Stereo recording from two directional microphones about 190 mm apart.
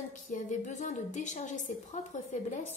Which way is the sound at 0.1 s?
40° left (ahead or behind).